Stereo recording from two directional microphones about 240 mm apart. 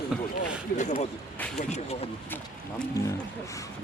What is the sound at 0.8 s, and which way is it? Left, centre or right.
Speech, left.